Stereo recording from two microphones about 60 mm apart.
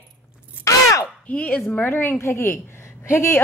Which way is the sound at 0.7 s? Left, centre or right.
Left.